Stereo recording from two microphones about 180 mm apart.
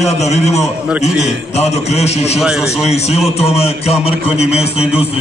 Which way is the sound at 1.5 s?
35° left (ahead or behind).